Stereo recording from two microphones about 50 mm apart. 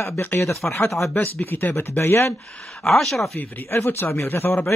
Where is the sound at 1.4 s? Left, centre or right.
Left.